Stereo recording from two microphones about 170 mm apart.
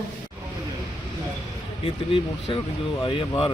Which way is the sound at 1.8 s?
30° left (ahead or behind).